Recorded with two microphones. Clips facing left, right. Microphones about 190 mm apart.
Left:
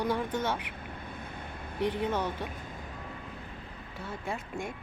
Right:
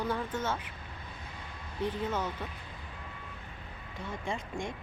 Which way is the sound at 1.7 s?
15° left (ahead or behind).